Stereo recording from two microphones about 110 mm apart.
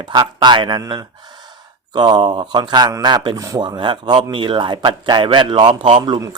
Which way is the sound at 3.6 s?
45° right (ahead or behind).